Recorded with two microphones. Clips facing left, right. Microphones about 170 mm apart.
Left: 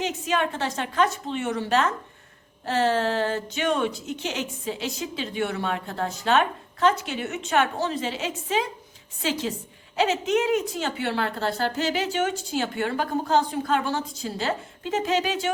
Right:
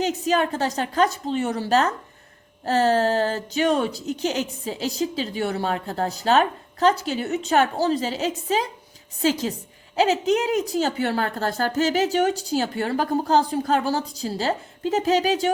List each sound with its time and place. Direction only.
0.0 s speech: 40° right (ahead or behind)